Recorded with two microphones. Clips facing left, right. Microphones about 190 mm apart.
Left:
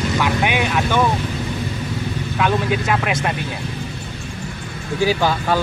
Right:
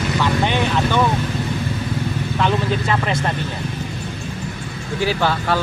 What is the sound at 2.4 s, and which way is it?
Speech, 10° left (ahead or behind).